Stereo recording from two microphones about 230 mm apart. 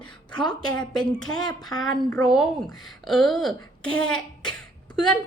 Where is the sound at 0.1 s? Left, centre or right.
Centre.